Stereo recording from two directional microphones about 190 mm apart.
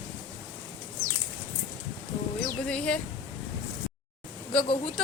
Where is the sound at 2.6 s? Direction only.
5° left (ahead or behind).